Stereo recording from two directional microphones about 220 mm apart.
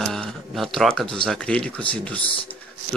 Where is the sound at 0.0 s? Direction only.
Centre (ahead or behind).